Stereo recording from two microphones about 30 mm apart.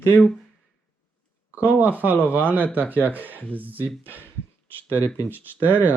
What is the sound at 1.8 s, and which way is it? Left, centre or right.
Speech, right.